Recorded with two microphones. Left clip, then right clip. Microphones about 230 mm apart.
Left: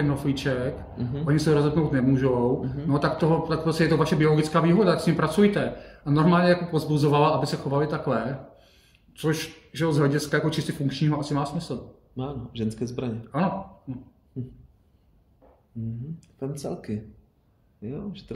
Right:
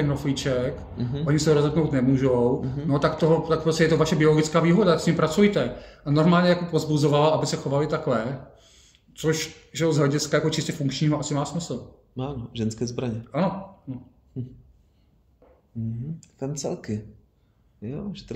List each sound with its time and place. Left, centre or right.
0.1 s a man's voice: centre
12.2 s speech: right
13.3 s speech: centre
14.3 s speech: right
16.2 s speech: right